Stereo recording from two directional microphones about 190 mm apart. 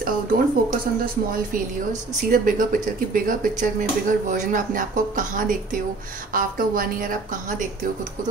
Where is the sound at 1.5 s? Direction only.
45° right (ahead or behind).